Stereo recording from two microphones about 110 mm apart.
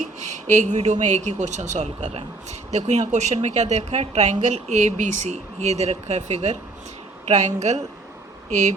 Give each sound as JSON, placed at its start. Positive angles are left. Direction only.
{"t": 0.2, "sound": "speech", "side_deg": -90}